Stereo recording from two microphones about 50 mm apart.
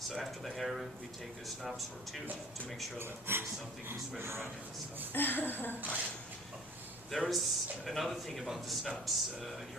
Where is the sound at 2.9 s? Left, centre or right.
Right.